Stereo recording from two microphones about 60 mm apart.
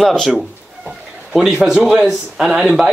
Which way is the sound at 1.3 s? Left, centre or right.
Centre.